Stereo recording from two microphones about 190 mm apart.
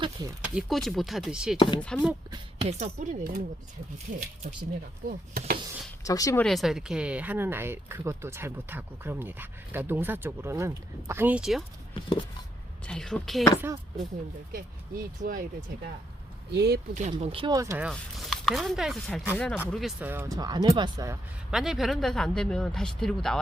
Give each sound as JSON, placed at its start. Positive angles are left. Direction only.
{"t": 0.0, "sound": "speech", "side_deg": -20}
{"t": 0.4, "sound": "speech", "side_deg": 0}
{"t": 2.6, "sound": "speech", "side_deg": -35}
{"t": 5.0, "sound": "speech", "side_deg": -50}
{"t": 6.1, "sound": "speech", "side_deg": 15}
{"t": 6.4, "sound": "speech", "side_deg": 0}
{"t": 12.8, "sound": "speech", "side_deg": 5}
{"t": 13.6, "sound": "speech", "side_deg": -15}
{"t": 14.5, "sound": "speech", "side_deg": -50}
{"t": 16.5, "sound": "speech", "side_deg": -60}
{"t": 16.9, "sound": "speech", "side_deg": -40}
{"t": 17.8, "sound": "speech", "side_deg": 0}
{"t": 20.0, "sound": "speech", "side_deg": -10}
{"t": 21.5, "sound": "speech", "side_deg": 0}